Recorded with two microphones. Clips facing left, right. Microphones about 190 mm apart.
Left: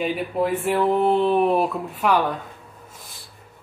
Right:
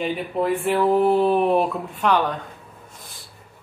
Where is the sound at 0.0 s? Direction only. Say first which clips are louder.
Even; centre (ahead or behind).